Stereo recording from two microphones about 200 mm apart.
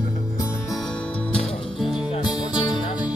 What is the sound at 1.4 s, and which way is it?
Music, 30° left (ahead or behind).